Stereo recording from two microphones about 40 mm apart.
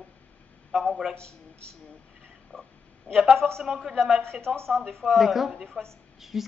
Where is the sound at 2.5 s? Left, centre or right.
Left.